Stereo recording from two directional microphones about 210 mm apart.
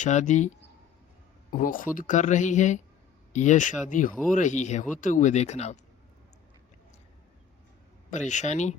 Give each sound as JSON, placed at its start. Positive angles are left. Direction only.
{"t": 0.0, "sound": "speech", "side_deg": 35}
{"t": 1.5, "sound": "speech", "side_deg": 40}
{"t": 8.1, "sound": "speech", "side_deg": 35}